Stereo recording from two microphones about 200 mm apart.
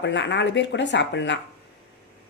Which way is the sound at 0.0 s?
60° left (ahead or behind).